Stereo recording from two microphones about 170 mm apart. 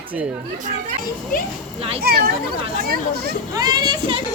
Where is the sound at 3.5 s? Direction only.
20° right (ahead or behind).